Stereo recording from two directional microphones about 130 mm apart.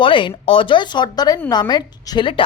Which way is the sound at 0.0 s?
40° left (ahead or behind).